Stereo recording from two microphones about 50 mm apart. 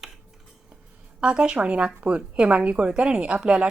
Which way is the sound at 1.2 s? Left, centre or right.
Right.